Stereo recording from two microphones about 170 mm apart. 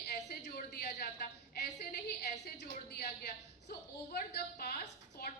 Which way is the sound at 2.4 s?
75° left (ahead or behind).